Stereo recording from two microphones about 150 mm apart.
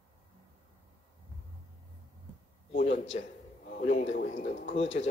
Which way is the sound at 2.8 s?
45° left (ahead or behind).